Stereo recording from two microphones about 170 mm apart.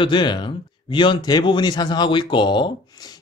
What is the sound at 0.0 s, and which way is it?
Speech, 30° left (ahead or behind).